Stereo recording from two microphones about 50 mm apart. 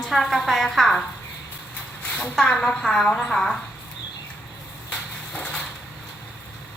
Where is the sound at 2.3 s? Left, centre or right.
Centre.